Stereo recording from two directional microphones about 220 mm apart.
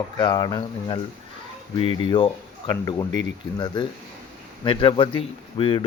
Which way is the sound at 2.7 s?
15° left (ahead or behind).